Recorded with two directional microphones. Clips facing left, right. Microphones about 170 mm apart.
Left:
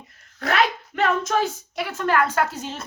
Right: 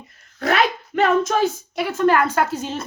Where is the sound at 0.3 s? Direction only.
20° right (ahead or behind).